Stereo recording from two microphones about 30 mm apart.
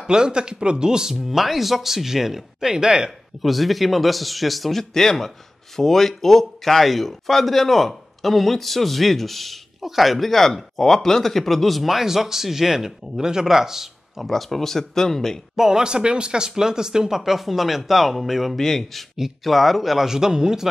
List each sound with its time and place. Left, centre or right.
0.0 s speech: right
3.4 s a man's voice: centre
10.1 s a man's voice: centre
14.2 s speech: centre
15.5 s speech: centre
15.8 s speech: right
17.2 s a man's voice: centre
18.6 s speech: centre
19.4 s a man's voice: centre
20.1 s speech: centre